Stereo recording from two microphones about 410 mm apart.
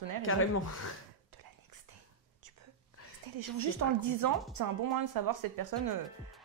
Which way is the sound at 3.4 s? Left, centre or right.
Right.